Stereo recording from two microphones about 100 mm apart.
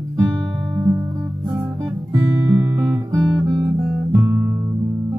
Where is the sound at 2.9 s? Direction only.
40° right (ahead or behind).